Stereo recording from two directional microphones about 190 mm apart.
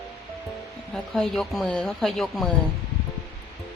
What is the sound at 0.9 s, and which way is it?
Speech, centre (ahead or behind).